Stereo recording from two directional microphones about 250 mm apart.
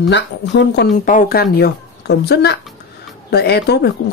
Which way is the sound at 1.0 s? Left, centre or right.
Left.